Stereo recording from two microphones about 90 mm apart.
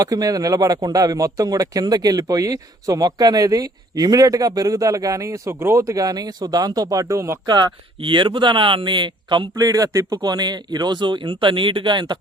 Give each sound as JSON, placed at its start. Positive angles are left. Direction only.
{"t": 0.0, "sound": "speech", "side_deg": -40}
{"t": 7.4, "sound": "speech", "side_deg": -55}
{"t": 9.6, "sound": "speech", "side_deg": -40}
{"t": 10.2, "sound": "speech", "side_deg": -50}